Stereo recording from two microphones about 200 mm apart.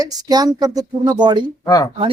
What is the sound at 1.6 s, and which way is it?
Speech, 15° left (ahead or behind).